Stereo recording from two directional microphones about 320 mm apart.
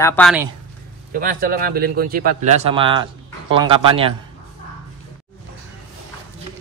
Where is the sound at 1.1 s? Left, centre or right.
Right.